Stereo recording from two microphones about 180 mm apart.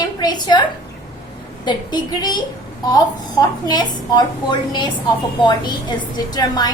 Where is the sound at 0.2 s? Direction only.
25° left (ahead or behind).